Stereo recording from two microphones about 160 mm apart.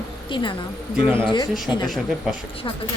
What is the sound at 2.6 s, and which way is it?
Speech, 25° left (ahead or behind).